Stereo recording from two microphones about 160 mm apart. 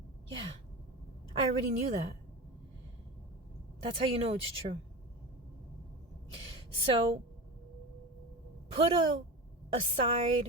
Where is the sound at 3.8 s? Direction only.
35° right (ahead or behind).